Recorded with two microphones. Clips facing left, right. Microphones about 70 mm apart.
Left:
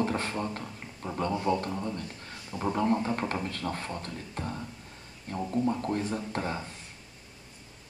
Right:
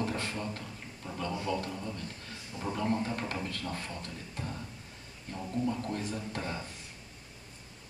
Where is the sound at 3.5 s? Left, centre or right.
Left.